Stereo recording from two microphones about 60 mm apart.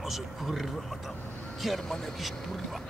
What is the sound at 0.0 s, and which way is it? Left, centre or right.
Speech, centre.